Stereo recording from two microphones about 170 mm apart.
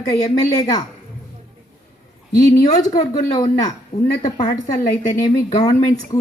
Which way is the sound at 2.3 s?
20° left (ahead or behind).